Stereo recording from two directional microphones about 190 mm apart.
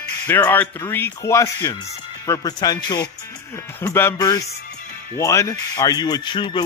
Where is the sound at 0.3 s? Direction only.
10° left (ahead or behind).